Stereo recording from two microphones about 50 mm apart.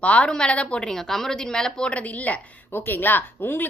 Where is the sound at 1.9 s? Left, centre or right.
Left.